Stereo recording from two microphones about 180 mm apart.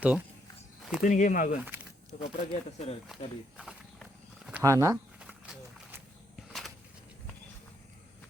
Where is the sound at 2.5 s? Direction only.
35° left (ahead or behind).